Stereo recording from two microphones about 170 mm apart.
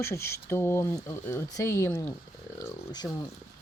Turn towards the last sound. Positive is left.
turn(degrees=25)  # may be behind; listen again after turning